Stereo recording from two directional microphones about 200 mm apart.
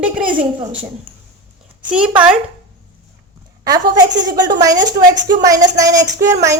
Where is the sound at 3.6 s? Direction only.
20° right (ahead or behind).